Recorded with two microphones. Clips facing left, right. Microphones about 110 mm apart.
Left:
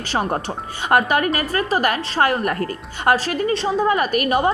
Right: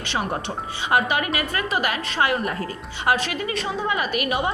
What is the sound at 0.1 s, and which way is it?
A woman's voice, 40° left (ahead or behind).